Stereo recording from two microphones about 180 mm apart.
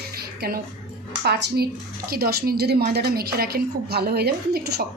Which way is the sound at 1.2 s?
70° right (ahead or behind).